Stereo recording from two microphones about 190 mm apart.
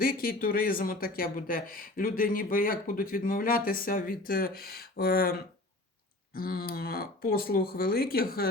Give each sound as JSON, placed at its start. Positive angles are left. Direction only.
{"t": 0.0, "sound": "speech", "side_deg": 50}